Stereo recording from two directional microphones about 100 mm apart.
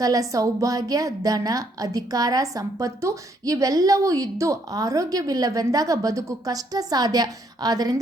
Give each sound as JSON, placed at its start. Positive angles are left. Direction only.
{"t": 0.0, "sound": "a woman's voice", "side_deg": -35}